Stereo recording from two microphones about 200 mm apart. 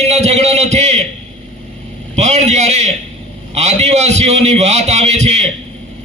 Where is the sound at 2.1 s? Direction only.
35° right (ahead or behind).